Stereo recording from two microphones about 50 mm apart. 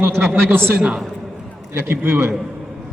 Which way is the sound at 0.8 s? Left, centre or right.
Right.